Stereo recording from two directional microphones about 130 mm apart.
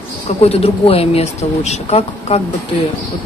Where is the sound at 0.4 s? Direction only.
50° left (ahead or behind).